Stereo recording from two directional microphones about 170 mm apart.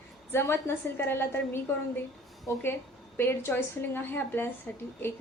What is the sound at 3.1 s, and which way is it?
A woman's voice, 15° left (ahead or behind).